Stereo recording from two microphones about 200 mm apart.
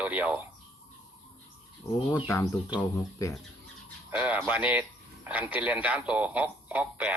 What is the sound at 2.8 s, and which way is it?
Speech, 15° left (ahead or behind).